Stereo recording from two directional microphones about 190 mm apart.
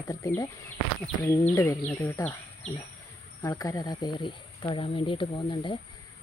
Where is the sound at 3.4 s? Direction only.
20° left (ahead or behind).